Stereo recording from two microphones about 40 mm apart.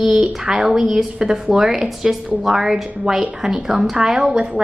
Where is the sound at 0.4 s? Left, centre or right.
Centre.